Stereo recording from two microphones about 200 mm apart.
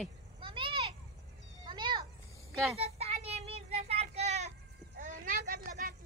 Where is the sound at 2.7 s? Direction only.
30° right (ahead or behind).